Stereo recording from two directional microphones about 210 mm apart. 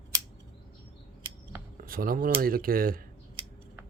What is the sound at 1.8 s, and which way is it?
Speech, 45° right (ahead or behind).